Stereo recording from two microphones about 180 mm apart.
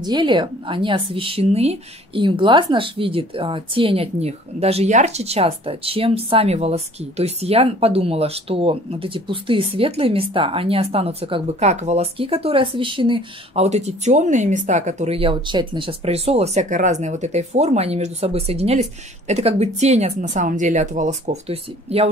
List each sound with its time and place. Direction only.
0.0 s a woman's voice: 25° right (ahead or behind)